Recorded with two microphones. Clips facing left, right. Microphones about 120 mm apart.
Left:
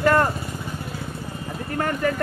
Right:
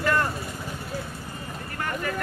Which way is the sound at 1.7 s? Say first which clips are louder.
Left 8 dB; 45° left (ahead or behind).